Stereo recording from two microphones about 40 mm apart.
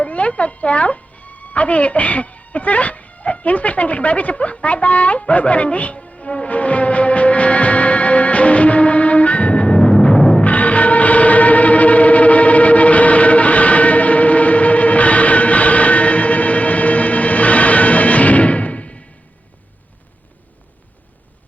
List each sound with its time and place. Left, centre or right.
0.0 s music: left
9.7 s timpani: left
10.2 s music: centre
10.4 s music: left